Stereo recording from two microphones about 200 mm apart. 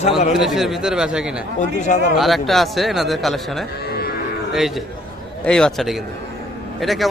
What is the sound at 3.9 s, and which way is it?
Livestock, 50° left (ahead or behind).